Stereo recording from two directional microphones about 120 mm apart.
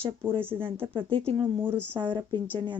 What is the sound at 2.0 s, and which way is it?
Speech, 40° right (ahead or behind).